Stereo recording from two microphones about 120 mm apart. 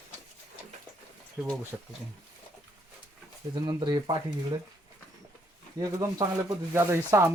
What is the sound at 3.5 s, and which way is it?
Speech, 35° right (ahead or behind).